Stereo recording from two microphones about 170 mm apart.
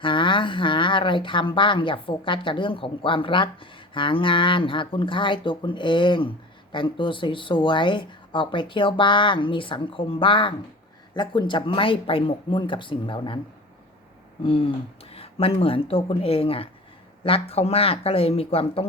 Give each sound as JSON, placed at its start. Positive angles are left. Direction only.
{"t": 0.0, "sound": "speech", "side_deg": 30}
{"t": 14.4, "sound": "speech", "side_deg": 30}